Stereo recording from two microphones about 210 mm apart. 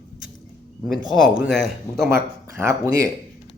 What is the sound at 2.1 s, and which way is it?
Speech, 10° right (ahead or behind).